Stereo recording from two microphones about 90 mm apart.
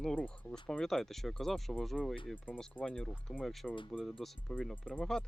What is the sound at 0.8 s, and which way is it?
Speech, 5° left (ahead or behind).